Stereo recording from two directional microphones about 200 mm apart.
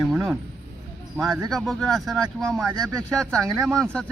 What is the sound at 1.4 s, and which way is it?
A man's voice, centre (ahead or behind).